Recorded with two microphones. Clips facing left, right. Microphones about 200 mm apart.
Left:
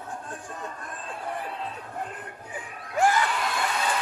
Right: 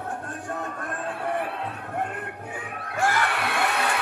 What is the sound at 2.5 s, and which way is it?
Music, 65° right (ahead or behind).